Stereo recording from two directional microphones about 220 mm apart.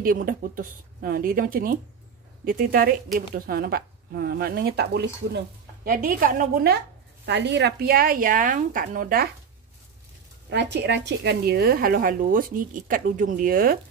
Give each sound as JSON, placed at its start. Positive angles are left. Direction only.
{"t": 0.0, "sound": "a woman's voice", "side_deg": -40}
{"t": 10.5, "sound": "speech", "side_deg": -50}